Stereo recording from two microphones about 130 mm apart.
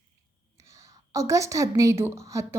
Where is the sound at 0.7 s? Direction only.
25° right (ahead or behind).